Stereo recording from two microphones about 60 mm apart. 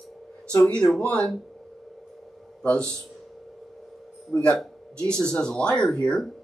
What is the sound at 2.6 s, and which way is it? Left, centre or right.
Speech, centre.